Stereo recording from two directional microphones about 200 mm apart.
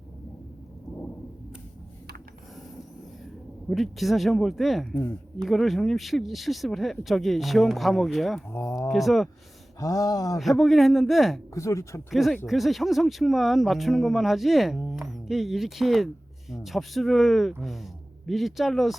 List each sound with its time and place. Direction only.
3.7 s speech: centre (ahead or behind)
9.8 s speech: 15° left (ahead or behind)
10.3 s speech: centre (ahead or behind)
11.5 s speech: 15° left (ahead or behind)
12.1 s speech: centre (ahead or behind)